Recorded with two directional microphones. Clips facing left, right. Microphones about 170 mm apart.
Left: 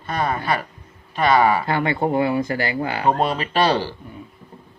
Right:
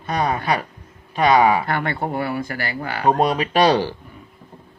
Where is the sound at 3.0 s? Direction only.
10° right (ahead or behind).